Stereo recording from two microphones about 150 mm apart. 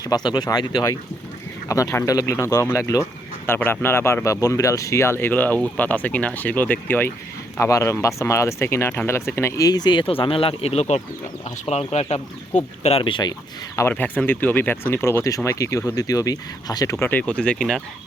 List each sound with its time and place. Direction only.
0.0 s speech: 25° left (ahead or behind)
13.7 s speech: 15° left (ahead or behind)